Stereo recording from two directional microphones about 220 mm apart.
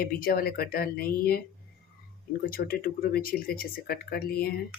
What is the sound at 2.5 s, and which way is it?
Speech, 40° left (ahead or behind).